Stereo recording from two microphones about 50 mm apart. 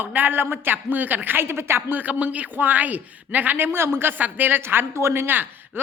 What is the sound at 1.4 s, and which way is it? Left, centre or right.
Speech, right.